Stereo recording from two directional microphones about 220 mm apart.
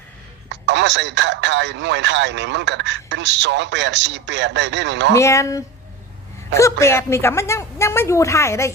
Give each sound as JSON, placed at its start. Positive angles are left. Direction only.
{"t": 0.5, "sound": "speech", "side_deg": -55}
{"t": 5.1, "sound": "a woman's voice", "side_deg": 15}